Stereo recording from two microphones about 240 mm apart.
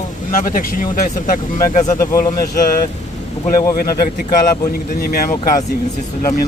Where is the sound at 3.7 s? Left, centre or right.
Left.